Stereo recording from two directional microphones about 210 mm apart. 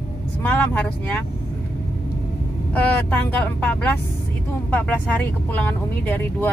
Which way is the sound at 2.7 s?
5° left (ahead or behind).